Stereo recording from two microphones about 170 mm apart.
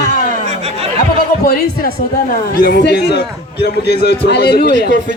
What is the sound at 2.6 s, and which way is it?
A man's voice, 70° left (ahead or behind).